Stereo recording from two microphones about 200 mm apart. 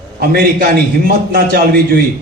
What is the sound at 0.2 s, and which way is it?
A man's voice, 50° right (ahead or behind).